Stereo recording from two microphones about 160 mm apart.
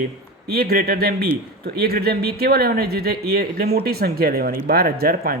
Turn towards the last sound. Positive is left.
turn(degrees=-70)  # may be behind; listen again after turning